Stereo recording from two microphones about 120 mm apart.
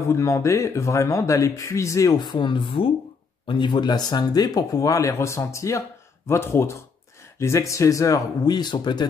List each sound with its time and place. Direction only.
0.1 s speech: 25° left (ahead or behind)
2.1 s speech: 40° left (ahead or behind)